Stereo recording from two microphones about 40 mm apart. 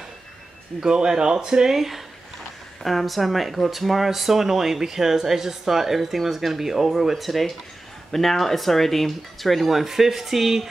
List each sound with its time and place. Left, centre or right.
0.7 s speech: centre